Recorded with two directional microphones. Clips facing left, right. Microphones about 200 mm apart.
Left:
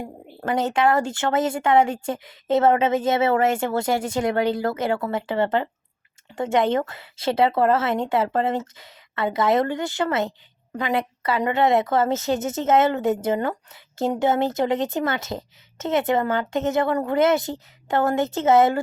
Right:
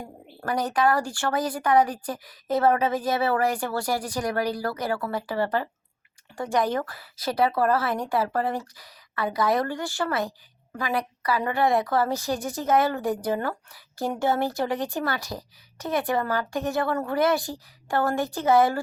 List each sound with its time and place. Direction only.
0.0 s speech: 25° left (ahead or behind)